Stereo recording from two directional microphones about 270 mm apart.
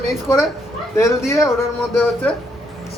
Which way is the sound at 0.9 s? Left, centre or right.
Centre.